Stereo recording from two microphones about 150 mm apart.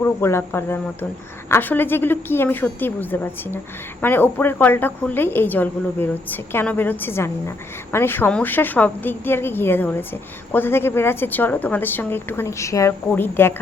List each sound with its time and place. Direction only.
0.0 s a woman's voice: 15° left (ahead or behind)